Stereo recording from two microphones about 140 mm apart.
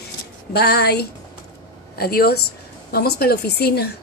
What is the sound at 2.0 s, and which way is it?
A woman's voice, 90° left.